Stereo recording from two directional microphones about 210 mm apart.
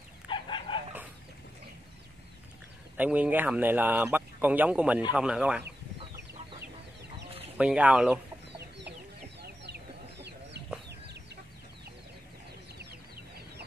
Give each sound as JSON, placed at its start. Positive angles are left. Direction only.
{"t": 0.3, "sound": "chicken", "side_deg": 20}
{"t": 3.0, "sound": "speech", "side_deg": -5}
{"t": 7.5, "sound": "speech", "side_deg": -5}
{"t": 8.5, "sound": "chicken", "side_deg": -55}